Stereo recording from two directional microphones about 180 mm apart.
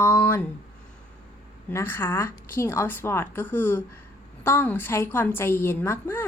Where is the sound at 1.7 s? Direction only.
15° left (ahead or behind).